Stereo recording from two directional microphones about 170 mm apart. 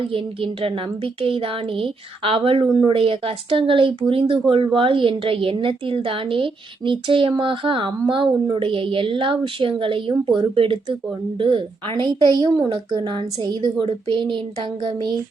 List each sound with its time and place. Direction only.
0.0 s a woman's voice: 30° right (ahead or behind)